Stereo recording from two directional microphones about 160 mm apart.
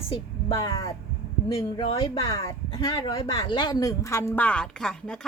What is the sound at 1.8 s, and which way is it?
A woman's voice, 35° left (ahead or behind).